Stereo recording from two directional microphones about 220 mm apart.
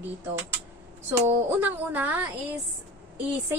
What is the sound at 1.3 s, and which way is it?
A woman's voice, 10° right (ahead or behind).